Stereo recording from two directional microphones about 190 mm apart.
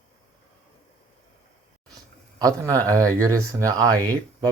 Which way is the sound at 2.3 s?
20° right (ahead or behind).